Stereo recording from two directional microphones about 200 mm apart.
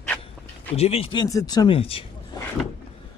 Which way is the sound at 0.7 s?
30° left (ahead or behind).